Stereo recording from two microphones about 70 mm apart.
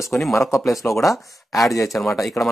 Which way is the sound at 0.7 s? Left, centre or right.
Left.